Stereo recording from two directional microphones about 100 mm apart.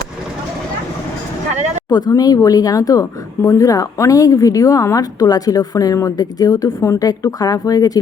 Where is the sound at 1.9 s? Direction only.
45° left (ahead or behind).